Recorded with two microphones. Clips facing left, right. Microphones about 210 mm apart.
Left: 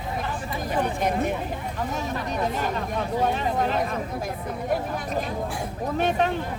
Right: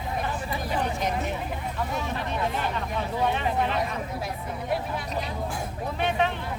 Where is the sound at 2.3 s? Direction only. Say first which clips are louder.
Left 3 dB; 40° left (ahead or behind).